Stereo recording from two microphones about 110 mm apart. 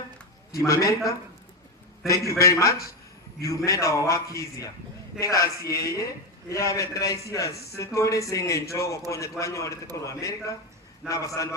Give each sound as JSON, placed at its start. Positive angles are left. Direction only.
{"t": 0.6, "sound": "a man's voice", "side_deg": 30}